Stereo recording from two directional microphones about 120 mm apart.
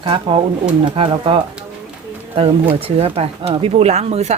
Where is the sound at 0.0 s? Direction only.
45° right (ahead or behind).